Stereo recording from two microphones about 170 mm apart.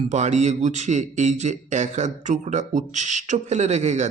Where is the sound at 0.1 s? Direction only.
40° right (ahead or behind).